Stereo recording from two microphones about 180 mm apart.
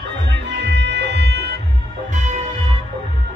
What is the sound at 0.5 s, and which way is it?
Music, 75° right (ahead or behind).